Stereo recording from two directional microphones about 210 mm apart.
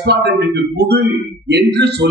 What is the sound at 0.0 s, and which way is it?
Speech, 50° right (ahead or behind).